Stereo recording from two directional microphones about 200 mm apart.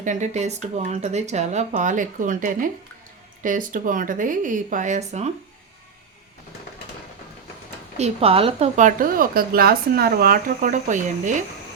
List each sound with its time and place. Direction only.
0.0 s a woman's voice: 35° right (ahead or behind)
7.9 s a woman's voice: 30° right (ahead or behind)